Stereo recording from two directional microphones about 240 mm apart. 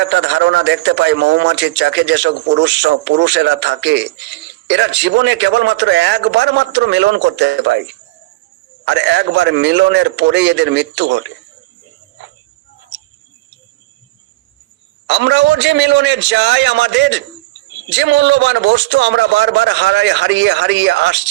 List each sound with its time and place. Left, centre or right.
0.0 s a man's voice: right
15.0 s a man's voice: right